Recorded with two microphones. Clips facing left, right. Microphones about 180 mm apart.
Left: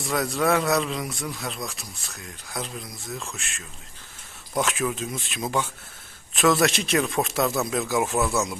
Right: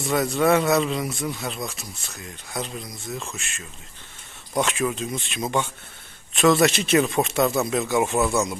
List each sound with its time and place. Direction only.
0.0 s a man's voice: centre (ahead or behind)